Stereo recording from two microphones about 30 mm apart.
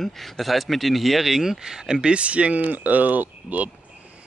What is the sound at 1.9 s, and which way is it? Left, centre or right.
Speech, right.